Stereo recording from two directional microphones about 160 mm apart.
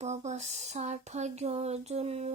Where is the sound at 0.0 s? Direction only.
45° right (ahead or behind).